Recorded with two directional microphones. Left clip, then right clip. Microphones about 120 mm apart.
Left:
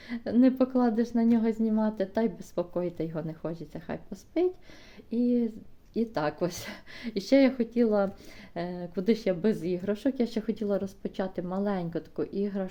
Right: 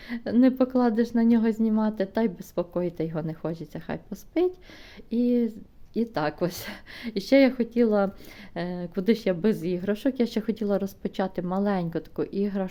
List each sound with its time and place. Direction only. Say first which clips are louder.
0.1 s a woman's voice: right 2 dB; 30° right (ahead or behind)